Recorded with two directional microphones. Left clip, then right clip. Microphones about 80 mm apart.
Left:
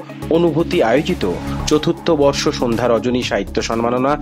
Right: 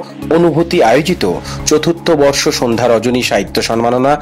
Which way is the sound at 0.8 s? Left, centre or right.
Right.